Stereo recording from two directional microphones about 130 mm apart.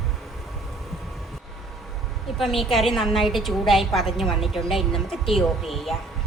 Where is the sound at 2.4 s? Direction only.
Centre (ahead or behind).